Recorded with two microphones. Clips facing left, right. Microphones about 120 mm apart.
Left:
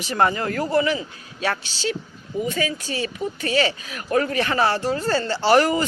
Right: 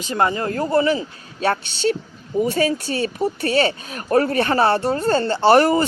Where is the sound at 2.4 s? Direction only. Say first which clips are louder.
Right 6 dB; 40° right (ahead or behind).